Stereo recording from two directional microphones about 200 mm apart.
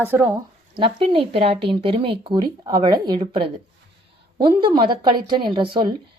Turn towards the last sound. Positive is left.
turn(degrees=-25)  # may be behind; listen again after turning